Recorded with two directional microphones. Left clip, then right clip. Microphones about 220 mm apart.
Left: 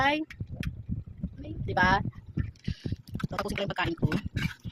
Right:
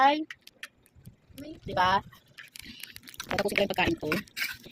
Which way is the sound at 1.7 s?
Centre (ahead or behind).